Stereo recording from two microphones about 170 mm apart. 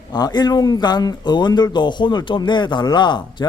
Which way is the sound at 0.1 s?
25° left (ahead or behind).